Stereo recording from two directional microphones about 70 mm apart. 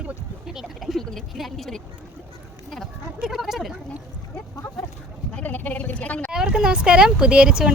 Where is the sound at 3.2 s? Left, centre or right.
Centre.